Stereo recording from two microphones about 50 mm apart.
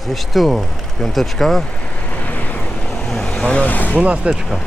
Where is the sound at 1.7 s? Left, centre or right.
Left.